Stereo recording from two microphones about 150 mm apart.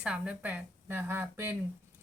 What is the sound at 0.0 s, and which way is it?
A woman's voice, 10° right (ahead or behind).